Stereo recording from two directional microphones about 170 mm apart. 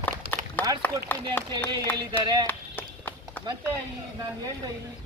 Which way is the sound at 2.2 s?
25° right (ahead or behind).